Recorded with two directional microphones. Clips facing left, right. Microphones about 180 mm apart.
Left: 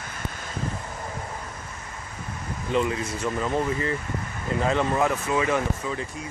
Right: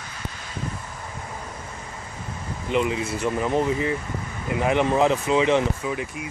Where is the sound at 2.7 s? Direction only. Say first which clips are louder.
Right 2 dB; 20° right (ahead or behind).